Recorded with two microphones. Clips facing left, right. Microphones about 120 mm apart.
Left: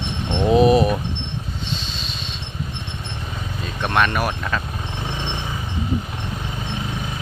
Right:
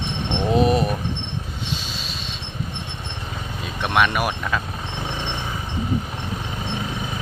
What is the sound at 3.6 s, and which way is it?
Speech, 5° right (ahead or behind).